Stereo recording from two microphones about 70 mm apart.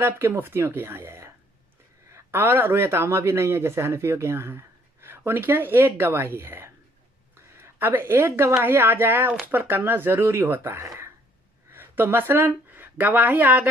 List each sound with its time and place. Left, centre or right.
0.0 s speech: right
11.7 s speech: right